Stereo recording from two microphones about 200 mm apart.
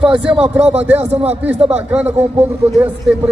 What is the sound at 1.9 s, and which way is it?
Speech, 5° right (ahead or behind).